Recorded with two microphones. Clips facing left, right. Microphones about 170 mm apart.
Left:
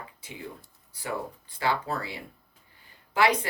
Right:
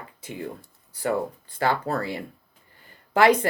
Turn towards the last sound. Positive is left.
turn(degrees=-50)  # may be behind; listen again after turning